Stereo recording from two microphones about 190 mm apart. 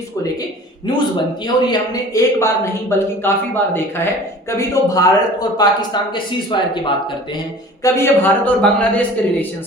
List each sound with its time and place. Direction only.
1.7 s a man's voice: 20° left (ahead or behind)
7.9 s a man's voice: 15° left (ahead or behind)